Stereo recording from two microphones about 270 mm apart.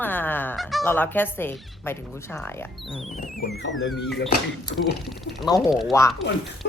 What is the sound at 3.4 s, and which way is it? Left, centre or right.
Speech, left.